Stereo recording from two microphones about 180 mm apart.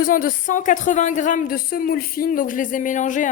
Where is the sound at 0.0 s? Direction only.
50° left (ahead or behind).